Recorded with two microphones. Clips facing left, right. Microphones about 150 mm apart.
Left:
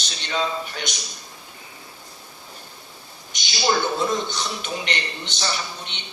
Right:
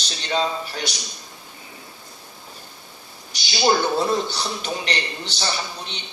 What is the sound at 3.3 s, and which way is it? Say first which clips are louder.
A man's voice: right 3 dB; 35° right (ahead or behind).